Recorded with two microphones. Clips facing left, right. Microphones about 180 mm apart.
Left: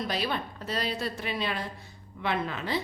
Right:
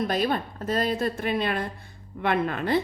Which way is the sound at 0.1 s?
45° right (ahead or behind).